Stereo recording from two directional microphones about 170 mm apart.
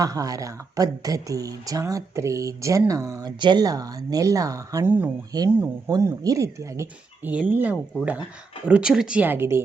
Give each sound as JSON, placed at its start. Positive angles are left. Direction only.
{"t": 0.0, "sound": "speech", "side_deg": -20}
{"t": 5.3, "sound": "speech", "side_deg": -25}